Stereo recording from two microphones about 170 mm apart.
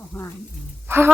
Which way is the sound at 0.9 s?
15° right (ahead or behind).